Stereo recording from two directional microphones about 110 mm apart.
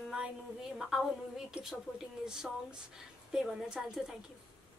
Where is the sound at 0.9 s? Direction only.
5° right (ahead or behind).